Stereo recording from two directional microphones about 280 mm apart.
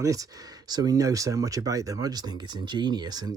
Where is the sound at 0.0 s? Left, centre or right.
Centre.